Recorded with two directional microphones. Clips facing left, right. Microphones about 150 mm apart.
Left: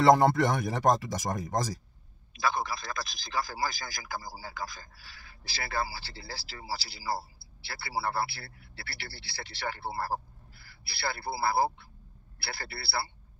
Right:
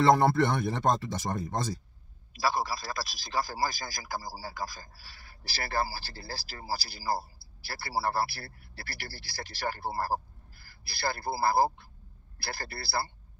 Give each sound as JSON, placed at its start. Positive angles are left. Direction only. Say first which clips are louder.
{"t": 0.0, "sound": "speech", "louder": "left 1 dB", "side_deg": 15}
{"t": 2.4, "sound": "a man's voice", "louder": "right 1 dB", "side_deg": -30}